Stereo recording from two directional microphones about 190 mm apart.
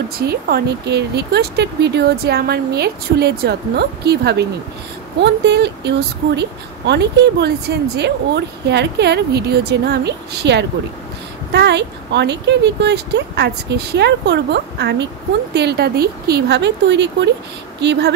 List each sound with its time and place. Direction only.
0.3 s speech: 60° right (ahead or behind)